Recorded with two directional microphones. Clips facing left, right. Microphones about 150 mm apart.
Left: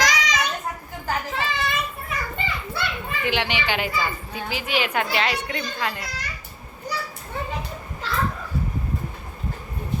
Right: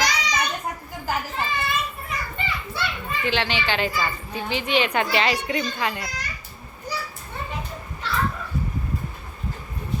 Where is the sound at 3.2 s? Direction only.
15° left (ahead or behind).